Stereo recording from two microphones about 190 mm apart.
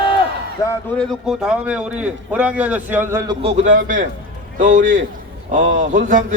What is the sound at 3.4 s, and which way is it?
A man's voice, 35° right (ahead or behind).